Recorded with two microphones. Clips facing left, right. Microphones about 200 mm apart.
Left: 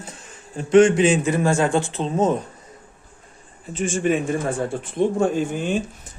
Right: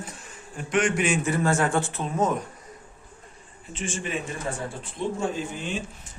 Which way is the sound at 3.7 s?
45° left (ahead or behind).